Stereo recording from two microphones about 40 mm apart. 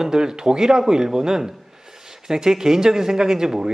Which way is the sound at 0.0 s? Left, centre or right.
Centre.